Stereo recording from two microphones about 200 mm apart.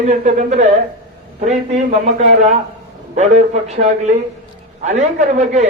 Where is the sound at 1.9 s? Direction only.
35° right (ahead or behind).